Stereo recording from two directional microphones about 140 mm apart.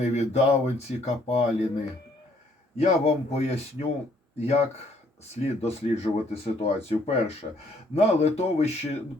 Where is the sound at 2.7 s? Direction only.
50° left (ahead or behind).